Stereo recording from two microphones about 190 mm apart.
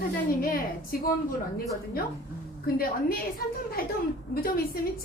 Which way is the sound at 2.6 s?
50° left (ahead or behind).